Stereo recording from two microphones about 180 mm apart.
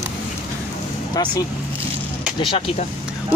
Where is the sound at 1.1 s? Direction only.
20° left (ahead or behind).